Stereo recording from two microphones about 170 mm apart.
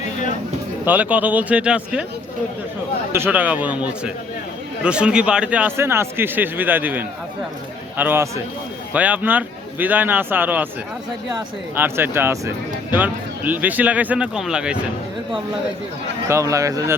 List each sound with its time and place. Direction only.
0.9 s speech: 10° right (ahead or behind)
3.1 s speech: 10° right (ahead or behind)
11.7 s speech: 10° right (ahead or behind)
16.3 s speech: 20° right (ahead or behind)